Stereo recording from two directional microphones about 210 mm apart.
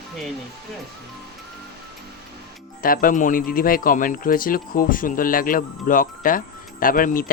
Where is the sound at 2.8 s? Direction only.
45° left (ahead or behind).